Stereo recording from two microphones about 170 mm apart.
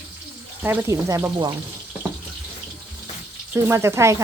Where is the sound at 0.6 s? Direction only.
15° right (ahead or behind).